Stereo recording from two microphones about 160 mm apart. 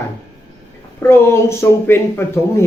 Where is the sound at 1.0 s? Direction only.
15° left (ahead or behind).